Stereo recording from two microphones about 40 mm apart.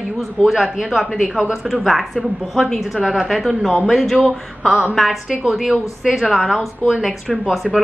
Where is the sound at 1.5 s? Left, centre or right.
Centre.